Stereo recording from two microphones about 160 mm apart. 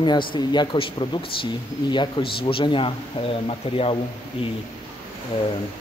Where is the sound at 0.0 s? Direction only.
30° left (ahead or behind).